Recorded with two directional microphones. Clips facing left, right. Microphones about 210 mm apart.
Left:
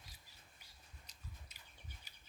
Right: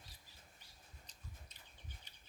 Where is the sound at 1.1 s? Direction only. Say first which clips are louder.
Left 1 dB; 10° left (ahead or behind).